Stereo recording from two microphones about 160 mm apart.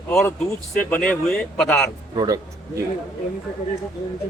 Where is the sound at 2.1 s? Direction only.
25° right (ahead or behind).